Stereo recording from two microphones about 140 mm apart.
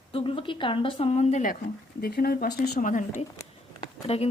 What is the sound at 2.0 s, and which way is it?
Speech, 90° left.